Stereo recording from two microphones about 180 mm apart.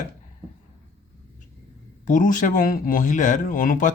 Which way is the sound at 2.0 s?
45° left (ahead or behind).